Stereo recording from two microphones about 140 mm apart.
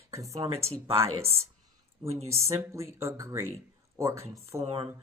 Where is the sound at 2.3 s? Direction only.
20° right (ahead or behind).